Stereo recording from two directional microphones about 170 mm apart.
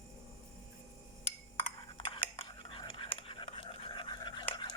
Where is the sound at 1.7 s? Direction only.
30° left (ahead or behind).